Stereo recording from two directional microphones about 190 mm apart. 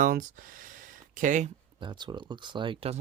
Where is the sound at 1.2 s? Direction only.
40° right (ahead or behind).